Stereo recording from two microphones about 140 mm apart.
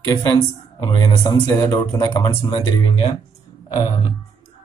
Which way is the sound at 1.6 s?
20° left (ahead or behind).